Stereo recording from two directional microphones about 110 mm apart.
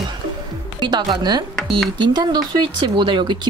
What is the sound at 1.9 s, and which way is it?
Speech, 40° right (ahead or behind).